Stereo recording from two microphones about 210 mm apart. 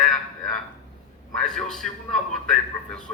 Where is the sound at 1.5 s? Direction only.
Centre (ahead or behind).